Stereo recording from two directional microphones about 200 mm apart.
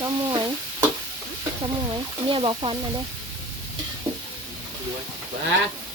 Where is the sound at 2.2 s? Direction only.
25° right (ahead or behind).